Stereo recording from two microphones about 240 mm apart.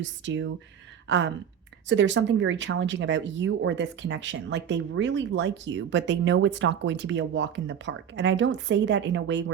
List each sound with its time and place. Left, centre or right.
0.0 s speech: right